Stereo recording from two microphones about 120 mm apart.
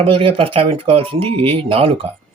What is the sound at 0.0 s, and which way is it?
Speech, 50° right (ahead or behind).